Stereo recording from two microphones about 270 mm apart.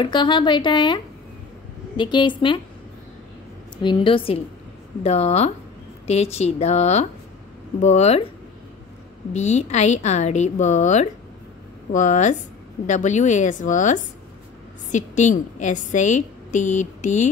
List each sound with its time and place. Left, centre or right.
0.0 s speech: centre
3.8 s a woman's voice: centre
9.3 s a woman's voice: left